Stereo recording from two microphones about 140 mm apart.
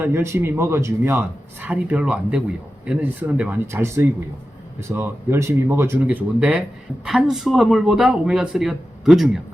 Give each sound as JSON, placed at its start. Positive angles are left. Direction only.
{"t": 0.0, "sound": "speech", "side_deg": -20}